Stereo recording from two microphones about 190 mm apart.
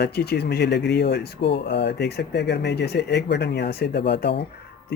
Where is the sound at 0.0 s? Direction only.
60° left (ahead or behind).